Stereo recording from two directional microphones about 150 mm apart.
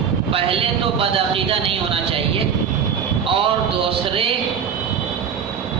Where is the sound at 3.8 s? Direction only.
40° right (ahead or behind).